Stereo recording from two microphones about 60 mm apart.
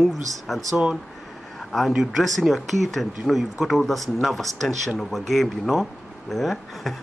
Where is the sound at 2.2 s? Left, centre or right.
Centre.